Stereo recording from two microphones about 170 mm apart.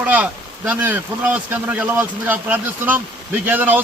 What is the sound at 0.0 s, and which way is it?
A man's voice, 10° right (ahead or behind).